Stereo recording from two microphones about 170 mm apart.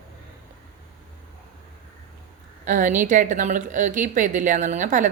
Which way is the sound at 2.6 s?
50° right (ahead or behind).